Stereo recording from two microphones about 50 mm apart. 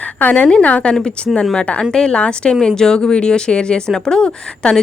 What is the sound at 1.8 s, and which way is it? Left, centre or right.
A woman's voice, centre.